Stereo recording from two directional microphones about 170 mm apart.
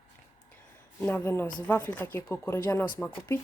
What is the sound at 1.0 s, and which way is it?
A woman's voice, 10° left (ahead or behind).